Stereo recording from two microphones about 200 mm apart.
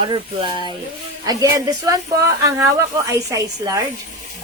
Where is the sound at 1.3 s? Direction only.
15° right (ahead or behind).